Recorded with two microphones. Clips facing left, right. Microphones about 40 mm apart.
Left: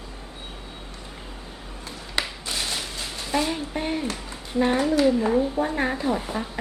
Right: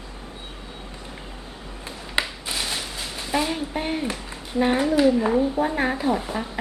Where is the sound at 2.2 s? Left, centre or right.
Centre.